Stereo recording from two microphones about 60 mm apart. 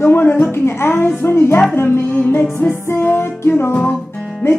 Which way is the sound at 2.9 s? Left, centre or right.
Left.